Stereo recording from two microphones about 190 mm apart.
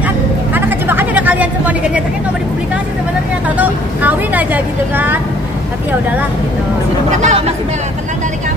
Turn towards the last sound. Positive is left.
turn(degrees=-40)  # may be behind; listen again after turning